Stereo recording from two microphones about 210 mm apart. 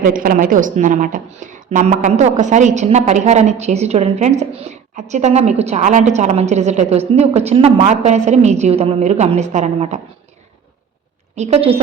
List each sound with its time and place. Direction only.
0.0 s a woman's voice: 40° right (ahead or behind)
11.3 s a woman's voice: 30° right (ahead or behind)